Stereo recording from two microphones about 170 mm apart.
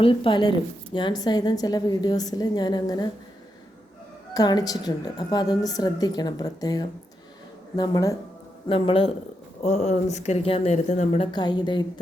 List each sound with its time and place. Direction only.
0.0 s a woman's voice: 30° left (ahead or behind)
4.4 s a woman's voice: 25° left (ahead or behind)
8.6 s speech: 30° left (ahead or behind)
11.3 s a woman's voice: 25° left (ahead or behind)